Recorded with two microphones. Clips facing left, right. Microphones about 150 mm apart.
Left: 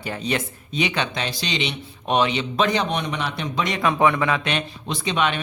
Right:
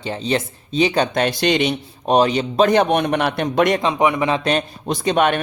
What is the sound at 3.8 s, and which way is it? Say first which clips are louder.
A man's voice: right 2 dB; 15° right (ahead or behind).